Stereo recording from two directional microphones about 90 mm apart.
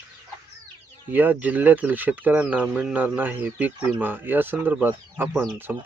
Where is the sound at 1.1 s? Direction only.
20° right (ahead or behind).